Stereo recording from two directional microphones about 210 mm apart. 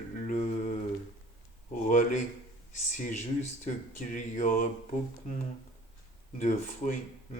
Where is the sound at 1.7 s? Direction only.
35° left (ahead or behind).